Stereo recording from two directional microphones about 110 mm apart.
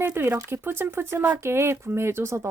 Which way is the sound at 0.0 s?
15° right (ahead or behind).